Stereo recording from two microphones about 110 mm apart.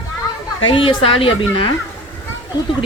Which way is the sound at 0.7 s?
50° left (ahead or behind).